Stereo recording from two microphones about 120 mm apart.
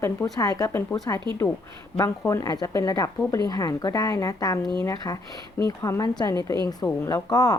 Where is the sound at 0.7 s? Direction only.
20° left (ahead or behind).